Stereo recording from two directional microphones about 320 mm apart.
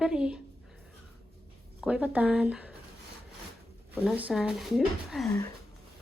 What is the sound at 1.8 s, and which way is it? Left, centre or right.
Speech, centre.